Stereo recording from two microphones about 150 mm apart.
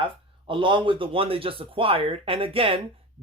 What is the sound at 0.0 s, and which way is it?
Speech, 35° right (ahead or behind).